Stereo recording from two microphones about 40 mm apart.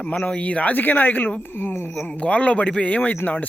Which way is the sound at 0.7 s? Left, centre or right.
Left.